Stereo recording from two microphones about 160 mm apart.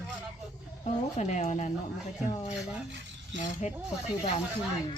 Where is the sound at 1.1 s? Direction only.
45° left (ahead or behind).